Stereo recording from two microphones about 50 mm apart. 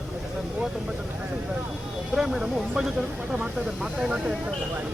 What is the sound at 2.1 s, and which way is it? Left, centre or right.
Speech, centre.